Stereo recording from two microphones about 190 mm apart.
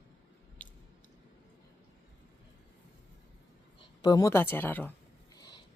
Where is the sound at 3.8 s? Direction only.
20° left (ahead or behind).